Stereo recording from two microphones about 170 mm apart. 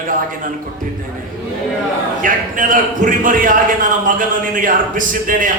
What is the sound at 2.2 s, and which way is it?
A man's voice, 50° right (ahead or behind).